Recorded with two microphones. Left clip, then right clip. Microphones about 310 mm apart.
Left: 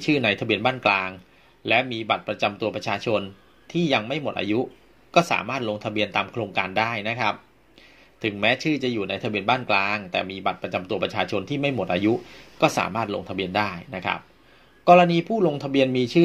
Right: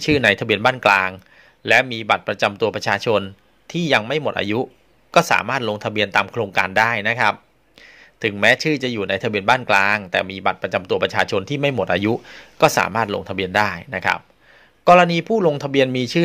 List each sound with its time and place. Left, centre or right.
0.0 s speech: right